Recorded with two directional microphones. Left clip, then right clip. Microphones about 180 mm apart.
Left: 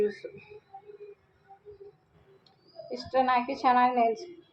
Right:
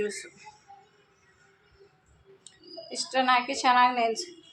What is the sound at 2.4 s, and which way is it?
A woman's voice, centre (ahead or behind).